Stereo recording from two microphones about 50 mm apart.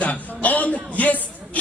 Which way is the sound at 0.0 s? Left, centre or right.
Left.